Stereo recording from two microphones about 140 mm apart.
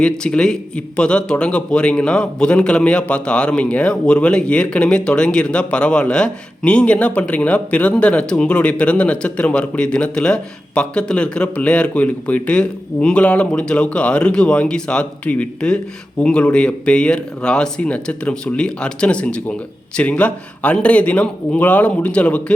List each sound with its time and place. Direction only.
0.0 s a man's voice: 5° left (ahead or behind)